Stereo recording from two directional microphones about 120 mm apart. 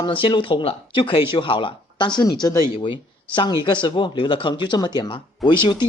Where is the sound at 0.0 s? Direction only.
45° left (ahead or behind).